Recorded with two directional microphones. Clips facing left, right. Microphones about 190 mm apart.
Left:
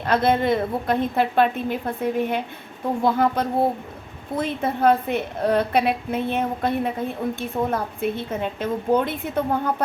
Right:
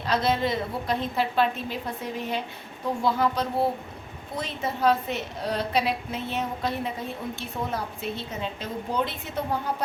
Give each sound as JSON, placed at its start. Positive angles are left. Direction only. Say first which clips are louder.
{"t": 0.0, "sound": "a woman's voice", "louder": "left 5 dB", "side_deg": 55}